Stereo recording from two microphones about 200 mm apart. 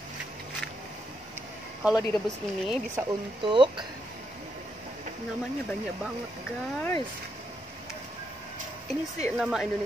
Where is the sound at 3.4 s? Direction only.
25° right (ahead or behind).